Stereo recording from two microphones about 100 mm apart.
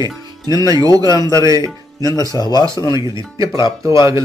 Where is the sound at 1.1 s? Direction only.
40° left (ahead or behind).